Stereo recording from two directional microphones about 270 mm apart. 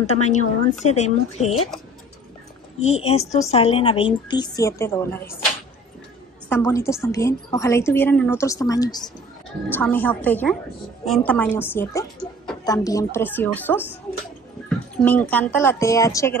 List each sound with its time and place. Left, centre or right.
0.0 s speech: left
2.8 s a woman's voice: left
6.5 s a woman's voice: centre
15.0 s a woman's voice: centre